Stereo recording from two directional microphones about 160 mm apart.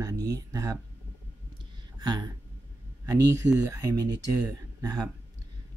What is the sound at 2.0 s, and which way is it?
Speech, 25° right (ahead or behind).